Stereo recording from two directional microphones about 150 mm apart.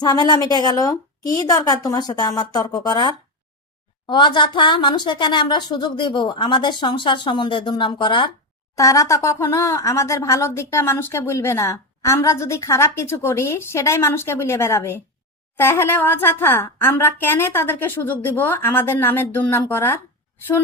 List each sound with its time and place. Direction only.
0.0 s a woman's voice: 30° left (ahead or behind)
8.7 s a woman's voice: 20° left (ahead or behind)